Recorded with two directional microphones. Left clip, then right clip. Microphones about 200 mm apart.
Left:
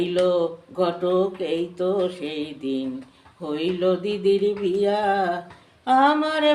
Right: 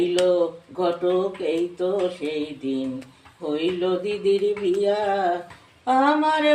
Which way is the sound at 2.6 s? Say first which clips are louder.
Left 2 dB; 20° left (ahead or behind).